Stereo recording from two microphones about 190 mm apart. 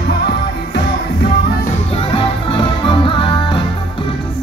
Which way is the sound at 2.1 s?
25° left (ahead or behind).